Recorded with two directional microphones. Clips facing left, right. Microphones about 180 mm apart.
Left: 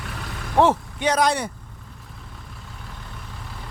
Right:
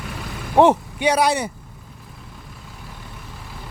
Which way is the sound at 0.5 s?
15° right (ahead or behind).